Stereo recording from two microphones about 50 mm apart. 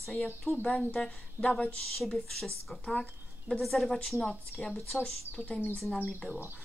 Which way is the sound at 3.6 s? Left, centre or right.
Centre.